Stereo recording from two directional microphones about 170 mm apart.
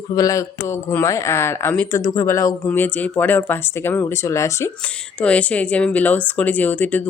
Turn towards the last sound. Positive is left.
turn(degrees=10)  # may be behind; listen again after turning